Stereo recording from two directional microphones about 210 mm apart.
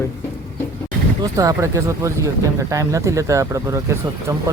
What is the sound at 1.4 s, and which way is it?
Speech, 15° right (ahead or behind).